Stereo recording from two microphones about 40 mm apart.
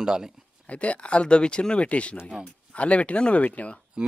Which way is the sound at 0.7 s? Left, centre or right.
Left.